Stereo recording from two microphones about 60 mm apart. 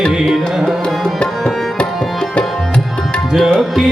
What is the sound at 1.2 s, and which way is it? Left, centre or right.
Tabla, centre.